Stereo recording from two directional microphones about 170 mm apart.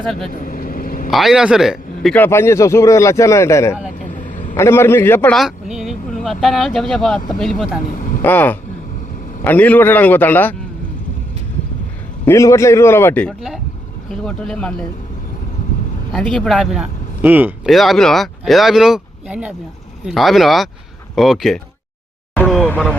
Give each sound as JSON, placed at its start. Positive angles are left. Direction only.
{"t": 0.3, "sound": "vehicle", "side_deg": 50}
{"t": 1.1, "sound": "speech", "side_deg": 0}
{"t": 2.1, "sound": "a man's voice", "side_deg": 15}
{"t": 4.1, "sound": "vehicle", "side_deg": 50}
{"t": 4.5, "sound": "a man's voice", "side_deg": 15}
{"t": 5.3, "sound": "speech", "side_deg": 0}
{"t": 7.9, "sound": "vehicle", "side_deg": 50}
{"t": 8.2, "sound": "a man's voice", "side_deg": 10}
{"t": 12.2, "sound": "a man's voice", "side_deg": 15}
{"t": 16.1, "sound": "speech", "side_deg": 0}
{"t": 17.7, "sound": "speech", "side_deg": 0}
{"t": 22.4, "sound": "a sound", "side_deg": 5}